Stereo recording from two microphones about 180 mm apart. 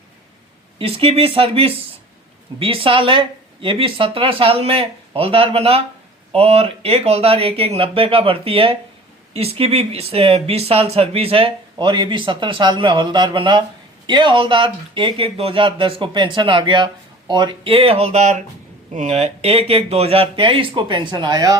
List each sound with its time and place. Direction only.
0.8 s speech: 30° right (ahead or behind)